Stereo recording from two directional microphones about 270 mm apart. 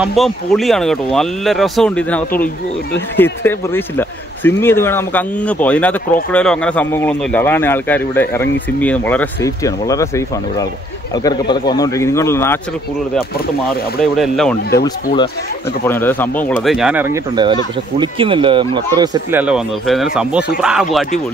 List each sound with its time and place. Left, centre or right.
0.0 s speech: centre
14.1 s speech: centre
15.9 s speech: centre
19.4 s speech: centre